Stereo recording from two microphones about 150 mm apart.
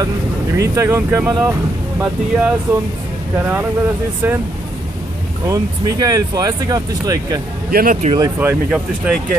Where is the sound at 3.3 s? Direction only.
15° right (ahead or behind).